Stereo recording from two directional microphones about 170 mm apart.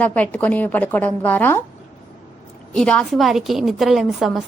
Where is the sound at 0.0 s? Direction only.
10° left (ahead or behind).